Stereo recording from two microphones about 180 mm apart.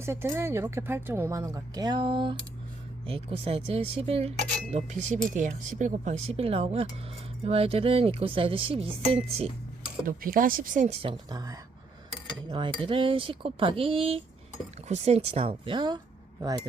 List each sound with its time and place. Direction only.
0.0 s speech: 15° right (ahead or behind); by 8.9 s 30° right (ahead or behind)
10.1 s speech: 50° right (ahead or behind)
11.0 s speech: 25° right (ahead or behind)